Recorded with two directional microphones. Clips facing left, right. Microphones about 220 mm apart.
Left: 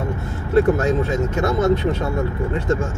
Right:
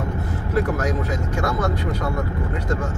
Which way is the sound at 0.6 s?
25° left (ahead or behind).